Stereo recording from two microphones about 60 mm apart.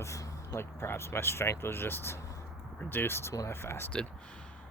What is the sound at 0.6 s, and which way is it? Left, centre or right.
Speech, left.